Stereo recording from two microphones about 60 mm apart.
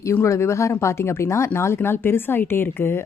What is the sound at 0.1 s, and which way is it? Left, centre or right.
Speech, left.